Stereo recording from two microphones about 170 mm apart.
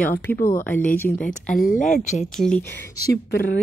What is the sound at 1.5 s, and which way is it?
Speech, 55° left (ahead or behind).